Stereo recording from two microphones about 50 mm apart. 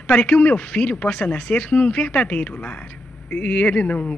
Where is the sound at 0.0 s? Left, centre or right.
Left.